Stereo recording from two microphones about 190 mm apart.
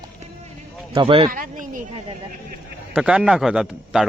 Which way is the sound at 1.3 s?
45° right (ahead or behind).